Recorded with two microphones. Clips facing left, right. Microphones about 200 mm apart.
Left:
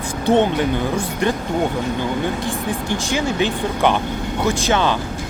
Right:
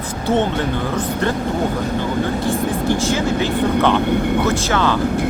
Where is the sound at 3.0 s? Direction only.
15° left (ahead or behind).